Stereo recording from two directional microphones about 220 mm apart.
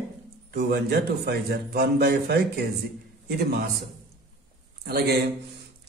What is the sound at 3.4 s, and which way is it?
Speech, 45° right (ahead or behind).